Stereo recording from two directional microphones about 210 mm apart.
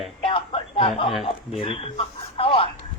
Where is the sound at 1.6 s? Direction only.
25° left (ahead or behind).